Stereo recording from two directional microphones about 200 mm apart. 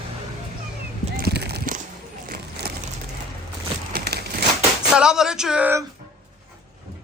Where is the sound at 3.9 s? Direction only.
55° right (ahead or behind).